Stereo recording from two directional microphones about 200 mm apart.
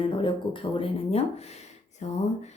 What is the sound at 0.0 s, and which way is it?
A woman's voice, 25° left (ahead or behind).